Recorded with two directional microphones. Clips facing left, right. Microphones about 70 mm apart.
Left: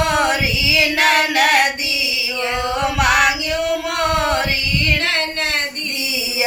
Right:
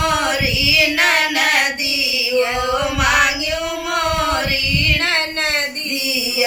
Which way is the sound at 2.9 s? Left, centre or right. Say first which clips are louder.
Left 2 dB; left.